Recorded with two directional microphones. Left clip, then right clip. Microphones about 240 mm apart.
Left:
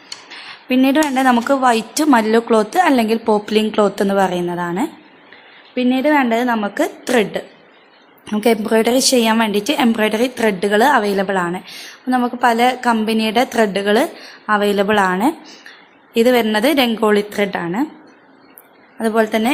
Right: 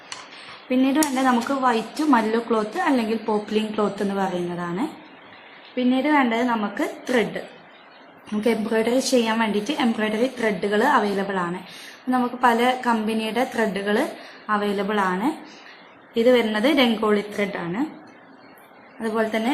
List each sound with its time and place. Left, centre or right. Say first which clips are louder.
0.7 s a woman's voice: left 6 dB; left
18.9 s a woman's voice: left 7 dB; left